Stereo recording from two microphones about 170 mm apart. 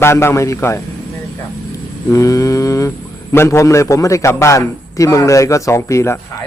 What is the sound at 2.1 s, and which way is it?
A man's voice, 20° left (ahead or behind).